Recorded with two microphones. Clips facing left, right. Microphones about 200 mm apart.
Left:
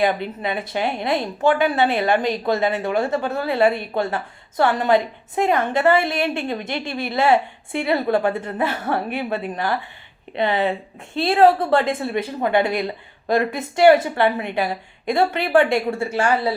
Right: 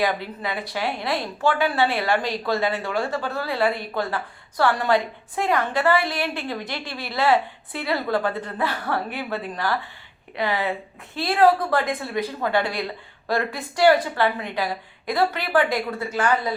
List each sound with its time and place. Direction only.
0.0 s a woman's voice: 25° left (ahead or behind)